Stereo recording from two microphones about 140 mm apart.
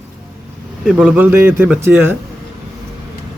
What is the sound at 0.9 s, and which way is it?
Speech, centre (ahead or behind).